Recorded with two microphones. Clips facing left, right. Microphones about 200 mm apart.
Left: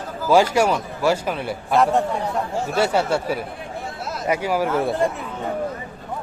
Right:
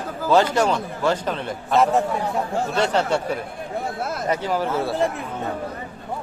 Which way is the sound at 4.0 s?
55° right (ahead or behind).